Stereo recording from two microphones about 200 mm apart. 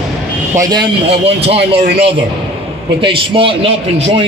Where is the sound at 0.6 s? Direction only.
20° right (ahead or behind).